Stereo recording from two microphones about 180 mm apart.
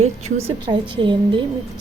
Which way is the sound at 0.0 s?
35° right (ahead or behind).